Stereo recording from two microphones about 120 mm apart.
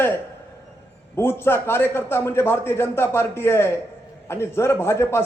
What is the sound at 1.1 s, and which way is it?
A man's voice, 20° left (ahead or behind).